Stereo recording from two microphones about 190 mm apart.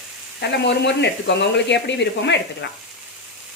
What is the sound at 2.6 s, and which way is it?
Frying, 65° left (ahead or behind).